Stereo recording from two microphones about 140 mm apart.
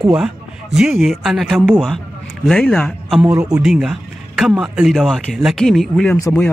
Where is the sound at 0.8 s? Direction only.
Centre (ahead or behind).